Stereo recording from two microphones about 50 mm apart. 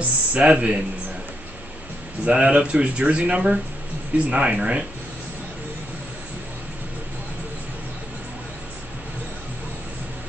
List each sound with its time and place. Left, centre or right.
0.0 s speech: right
2.2 s speech: right